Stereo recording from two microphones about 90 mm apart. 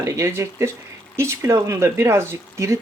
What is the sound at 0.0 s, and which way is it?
Speech, 35° right (ahead or behind).